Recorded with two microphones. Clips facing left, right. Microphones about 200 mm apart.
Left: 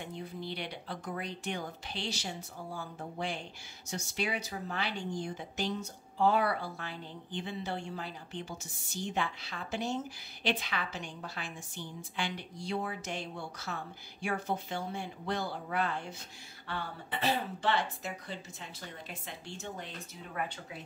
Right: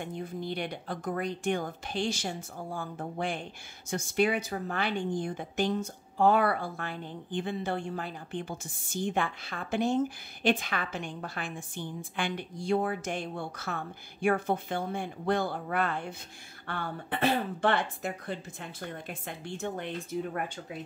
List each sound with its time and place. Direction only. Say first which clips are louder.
0.0 s a woman's voice: right 5 dB; 50° right (ahead or behind)